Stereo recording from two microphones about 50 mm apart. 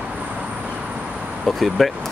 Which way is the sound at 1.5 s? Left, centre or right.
Centre.